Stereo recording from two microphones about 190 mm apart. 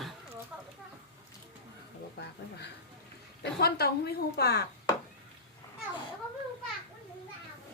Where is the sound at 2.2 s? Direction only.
60° left (ahead or behind).